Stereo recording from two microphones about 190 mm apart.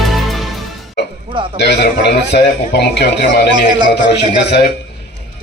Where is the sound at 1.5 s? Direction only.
60° left (ahead or behind).